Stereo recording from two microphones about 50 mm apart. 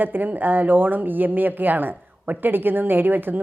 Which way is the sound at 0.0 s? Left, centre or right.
Right.